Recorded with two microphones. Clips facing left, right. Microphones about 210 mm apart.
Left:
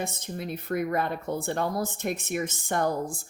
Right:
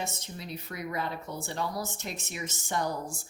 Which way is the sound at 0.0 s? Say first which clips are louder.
Left 5 dB; 55° left (ahead or behind).